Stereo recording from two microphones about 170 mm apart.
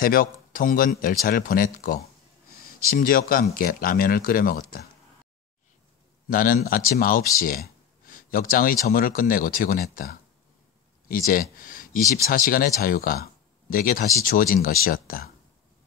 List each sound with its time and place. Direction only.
0.0 s speech: 55° left (ahead or behind)
6.2 s speech: 55° left (ahead or behind)
11.5 s a sound: 55° left (ahead or behind)
12.3 s speech: 55° left (ahead or behind)